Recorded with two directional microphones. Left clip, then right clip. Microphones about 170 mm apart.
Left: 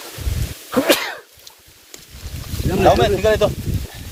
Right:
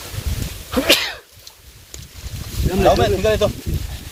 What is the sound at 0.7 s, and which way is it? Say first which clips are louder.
Cough: even; 45° left (ahead or behind).